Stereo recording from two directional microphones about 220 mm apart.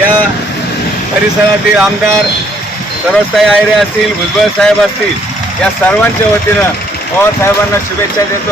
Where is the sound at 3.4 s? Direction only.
Centre (ahead or behind).